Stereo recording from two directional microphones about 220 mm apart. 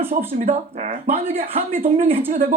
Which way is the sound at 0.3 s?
30° right (ahead or behind).